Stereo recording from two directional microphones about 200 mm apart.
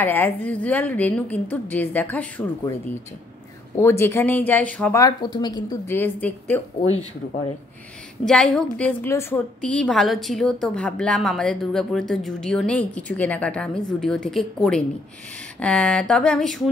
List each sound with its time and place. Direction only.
0.0 s a woman's voice: 10° left (ahead or behind)
5.0 s a woman's voice: 20° left (ahead or behind)
8.3 s a woman's voice: 5° left (ahead or behind)